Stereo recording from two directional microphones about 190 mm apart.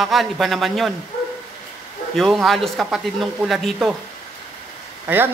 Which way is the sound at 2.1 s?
Centre (ahead or behind).